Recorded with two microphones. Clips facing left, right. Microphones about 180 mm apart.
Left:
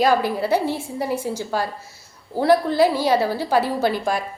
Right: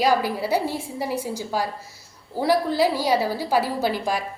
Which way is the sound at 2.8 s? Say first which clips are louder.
Left 3 dB; 10° right (ahead or behind).